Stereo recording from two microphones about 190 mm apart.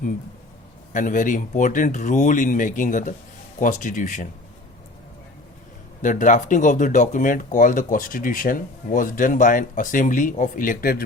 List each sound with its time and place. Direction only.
0.9 s speech: 45° left (ahead or behind)
6.0 s speech: 40° left (ahead or behind)